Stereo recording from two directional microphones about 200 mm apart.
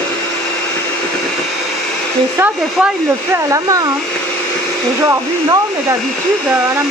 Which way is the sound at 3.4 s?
15° right (ahead or behind).